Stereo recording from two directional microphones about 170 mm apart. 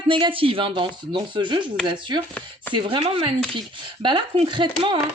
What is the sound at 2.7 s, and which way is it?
Speech, 30° right (ahead or behind).